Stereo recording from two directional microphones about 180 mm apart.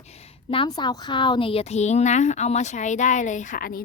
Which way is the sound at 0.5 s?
25° left (ahead or behind).